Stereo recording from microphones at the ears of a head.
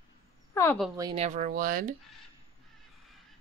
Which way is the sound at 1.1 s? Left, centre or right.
Right.